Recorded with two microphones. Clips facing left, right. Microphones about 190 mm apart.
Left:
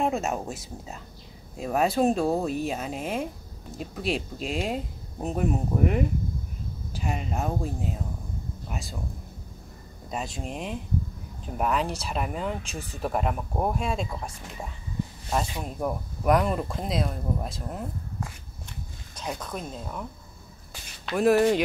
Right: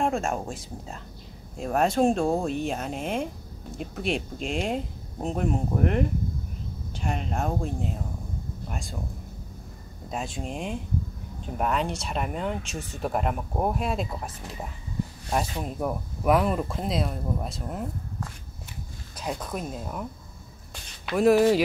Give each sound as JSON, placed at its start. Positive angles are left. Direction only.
{"t": 0.0, "sound": "speech", "side_deg": 5}
{"t": 10.1, "sound": "speech", "side_deg": 0}
{"t": 19.1, "sound": "a woman's voice", "side_deg": -5}